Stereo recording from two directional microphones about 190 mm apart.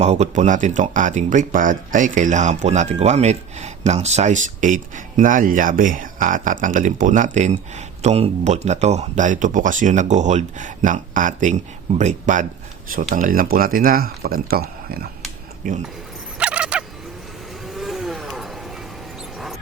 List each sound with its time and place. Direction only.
0.0 s speech: 35° right (ahead or behind)
16.4 s a sound: 5° right (ahead or behind)
17.7 s vehicle: centre (ahead or behind)